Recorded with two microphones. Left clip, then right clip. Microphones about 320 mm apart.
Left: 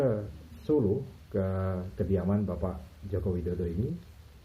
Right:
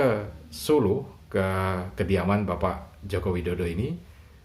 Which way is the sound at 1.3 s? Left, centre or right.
Right.